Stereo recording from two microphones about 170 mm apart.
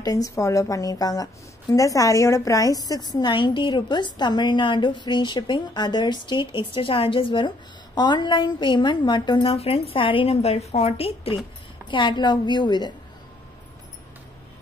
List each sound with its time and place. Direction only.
0.0 s a woman's voice: 20° left (ahead or behind)